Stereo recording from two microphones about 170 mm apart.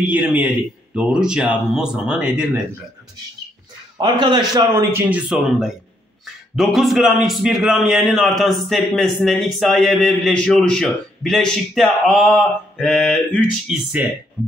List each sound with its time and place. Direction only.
0.0 s a man's voice: 5° right (ahead or behind)
4.0 s a man's voice: 25° right (ahead or behind)
5.3 s a man's voice: centre (ahead or behind)
13.7 s a man's voice: 5° right (ahead or behind)